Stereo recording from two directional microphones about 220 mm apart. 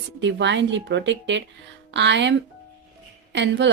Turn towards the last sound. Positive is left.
turn(degrees=-55)  # may be behind; listen again after turning